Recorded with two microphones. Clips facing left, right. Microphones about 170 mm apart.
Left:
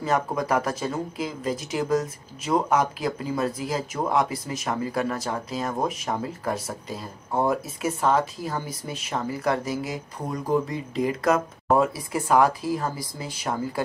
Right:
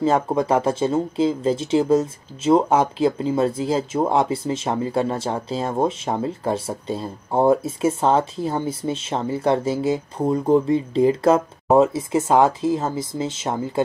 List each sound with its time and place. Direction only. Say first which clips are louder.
0.0 s speech: right 6 dB; 25° right (ahead or behind)